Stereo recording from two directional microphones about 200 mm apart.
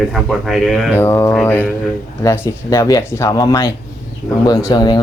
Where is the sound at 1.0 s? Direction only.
10° left (ahead or behind).